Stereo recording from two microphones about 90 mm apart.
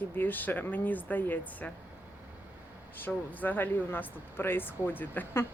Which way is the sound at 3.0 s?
20° left (ahead or behind).